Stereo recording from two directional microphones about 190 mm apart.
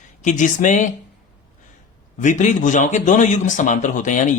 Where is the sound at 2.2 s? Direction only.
40° left (ahead or behind).